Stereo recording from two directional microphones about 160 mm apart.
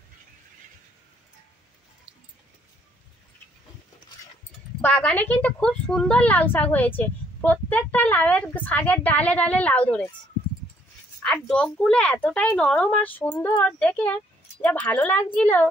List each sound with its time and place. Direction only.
4.8 s a woman's voice: 10° left (ahead or behind)
11.2 s a woman's voice: 5° left (ahead or behind)